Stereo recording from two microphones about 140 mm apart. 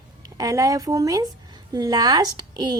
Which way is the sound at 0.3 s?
25° right (ahead or behind).